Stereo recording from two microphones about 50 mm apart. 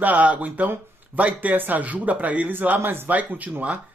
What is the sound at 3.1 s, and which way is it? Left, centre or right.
Speech, right.